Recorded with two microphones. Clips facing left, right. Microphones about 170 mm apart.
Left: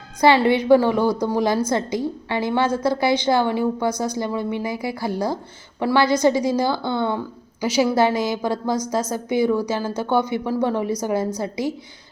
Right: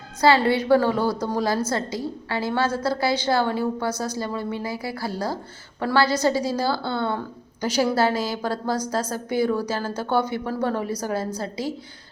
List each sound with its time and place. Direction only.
0.2 s a woman's voice: 20° left (ahead or behind)